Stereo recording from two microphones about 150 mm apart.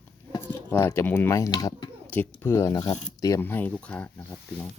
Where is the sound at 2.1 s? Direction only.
15° left (ahead or behind).